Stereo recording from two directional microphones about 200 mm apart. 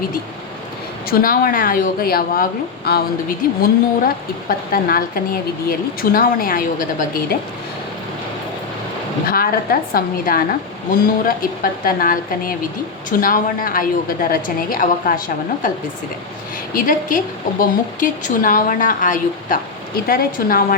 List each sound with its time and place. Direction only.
1.1 s a woman's voice: 45° left (ahead or behind)
9.2 s a woman's voice: 45° left (ahead or behind)
16.7 s a woman's voice: 40° left (ahead or behind)